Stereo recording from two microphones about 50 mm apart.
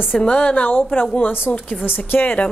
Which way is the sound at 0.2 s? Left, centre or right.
Left.